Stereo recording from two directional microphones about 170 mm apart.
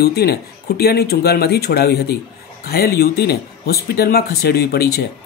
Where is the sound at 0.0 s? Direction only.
70° left (ahead or behind).